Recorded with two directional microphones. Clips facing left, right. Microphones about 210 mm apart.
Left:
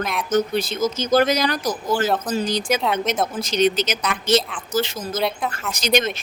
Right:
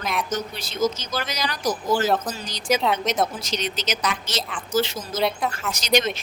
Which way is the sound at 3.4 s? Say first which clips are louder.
Left 9 dB; 55° left (ahead or behind).